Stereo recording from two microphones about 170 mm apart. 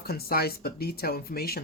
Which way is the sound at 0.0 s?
65° left (ahead or behind).